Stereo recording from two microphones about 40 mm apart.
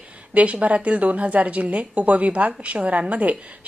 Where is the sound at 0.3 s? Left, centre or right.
Right.